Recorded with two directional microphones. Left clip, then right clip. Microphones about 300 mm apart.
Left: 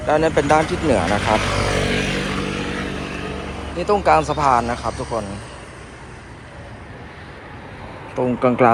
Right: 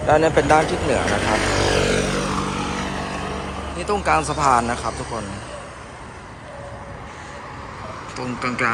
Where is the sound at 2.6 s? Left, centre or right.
Right.